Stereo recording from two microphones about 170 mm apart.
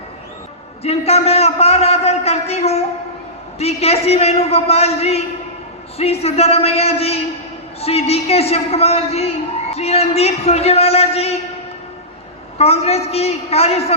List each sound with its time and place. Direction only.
0.8 s a sound: 35° left (ahead or behind)
3.6 s a man's voice: 35° left (ahead or behind)
12.5 s a man's voice: 35° left (ahead or behind)